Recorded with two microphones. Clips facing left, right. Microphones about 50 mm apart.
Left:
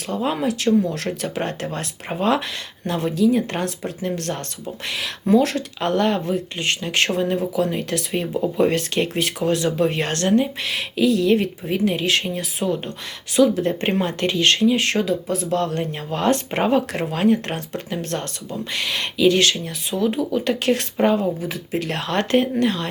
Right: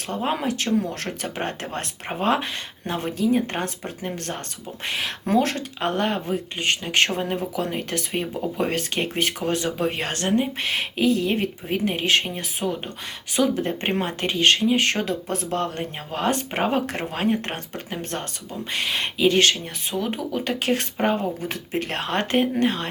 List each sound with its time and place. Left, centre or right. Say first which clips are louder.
0.1 s speech: left 3 dB; right
5.2 s speech: left 5 dB; right
5.8 s speech: left 4 dB; centre
9.7 s speech: left 4 dB; centre
10.7 s speech: even; right
12.6 s speech: left 4 dB; centre
13.3 s speech: left 5 dB; right
15.0 s speech: left 4 dB; right
15.5 s speech: left 4 dB; right
16.1 s speech: left 4 dB; centre
16.7 s speech: left 4 dB; right
20.3 s speech: left 4 dB; centre